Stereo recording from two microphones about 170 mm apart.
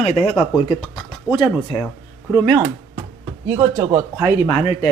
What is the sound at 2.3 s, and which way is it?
Speech, 20° right (ahead or behind).